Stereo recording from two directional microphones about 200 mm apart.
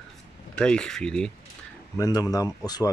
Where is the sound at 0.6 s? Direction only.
5° left (ahead or behind).